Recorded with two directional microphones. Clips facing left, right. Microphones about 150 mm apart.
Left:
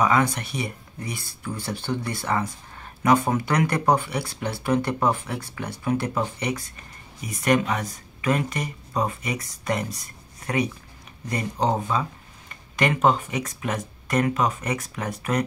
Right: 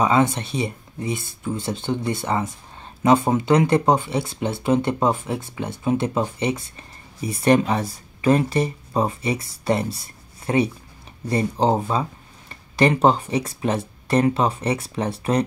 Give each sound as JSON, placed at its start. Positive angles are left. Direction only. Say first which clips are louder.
{"t": 0.0, "sound": "speech", "louder": "right 3 dB", "side_deg": -25}